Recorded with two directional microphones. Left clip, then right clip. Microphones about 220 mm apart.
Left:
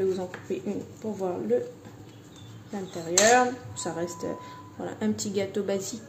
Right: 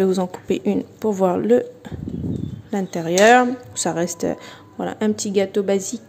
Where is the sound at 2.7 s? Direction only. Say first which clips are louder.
Right 8 dB; 45° right (ahead or behind).